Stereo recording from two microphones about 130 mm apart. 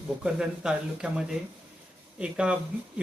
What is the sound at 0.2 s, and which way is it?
Speech, 5° right (ahead or behind).